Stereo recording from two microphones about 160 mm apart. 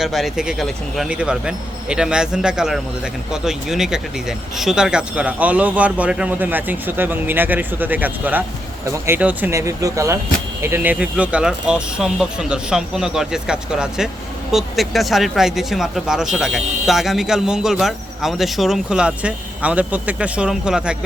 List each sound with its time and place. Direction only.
0.0 s speech: centre (ahead or behind)